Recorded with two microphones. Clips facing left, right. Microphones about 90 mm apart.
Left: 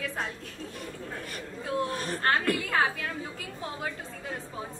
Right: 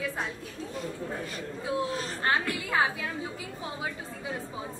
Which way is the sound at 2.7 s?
5° right (ahead or behind).